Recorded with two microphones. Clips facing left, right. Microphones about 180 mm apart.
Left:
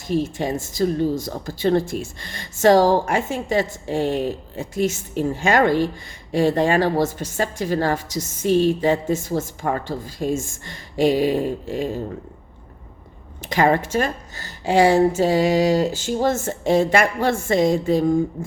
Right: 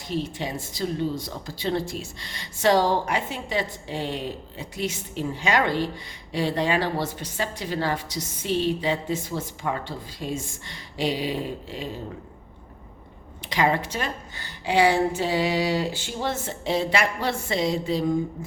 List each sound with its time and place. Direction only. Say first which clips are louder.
0.1 s a woman's voice: left 7 dB; 45° left (ahead or behind)
13.4 s a woman's voice: left 5 dB; 50° left (ahead or behind)